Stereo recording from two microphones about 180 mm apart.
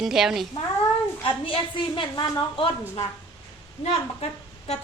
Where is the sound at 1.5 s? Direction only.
25° left (ahead or behind).